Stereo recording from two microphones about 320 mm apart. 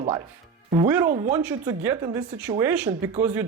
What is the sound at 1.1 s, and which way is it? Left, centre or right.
Speech, centre.